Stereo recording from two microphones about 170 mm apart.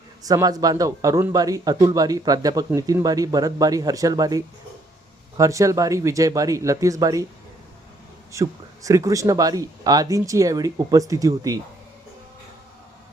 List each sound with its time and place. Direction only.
0.2 s a man's voice: 20° right (ahead or behind)
8.3 s a man's voice: 20° right (ahead or behind)